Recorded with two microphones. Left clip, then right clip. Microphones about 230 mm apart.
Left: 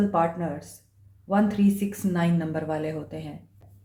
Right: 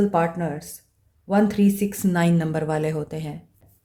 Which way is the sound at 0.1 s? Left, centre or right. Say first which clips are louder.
Right 2 dB; right.